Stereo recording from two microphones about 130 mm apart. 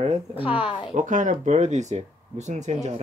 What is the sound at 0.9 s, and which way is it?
Speech, 75° right (ahead or behind).